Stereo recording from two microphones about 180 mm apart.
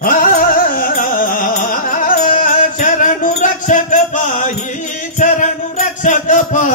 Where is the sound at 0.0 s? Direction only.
50° left (ahead or behind).